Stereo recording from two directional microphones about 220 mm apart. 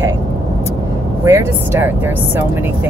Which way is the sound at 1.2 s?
10° right (ahead or behind).